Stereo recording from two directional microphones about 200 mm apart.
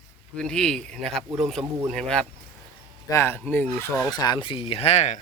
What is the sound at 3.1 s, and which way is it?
Speech, 15° left (ahead or behind).